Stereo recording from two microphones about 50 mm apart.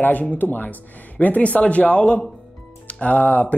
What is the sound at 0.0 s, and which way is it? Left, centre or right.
Speech, left.